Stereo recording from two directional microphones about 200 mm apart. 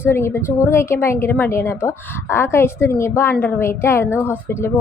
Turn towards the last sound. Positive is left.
turn(degrees=10)  # may be behind; listen again after turning